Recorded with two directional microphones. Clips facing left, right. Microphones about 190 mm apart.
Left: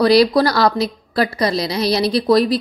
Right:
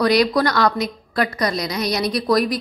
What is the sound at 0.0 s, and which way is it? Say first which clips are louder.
A woman's voice: left 4 dB; 30° left (ahead or behind).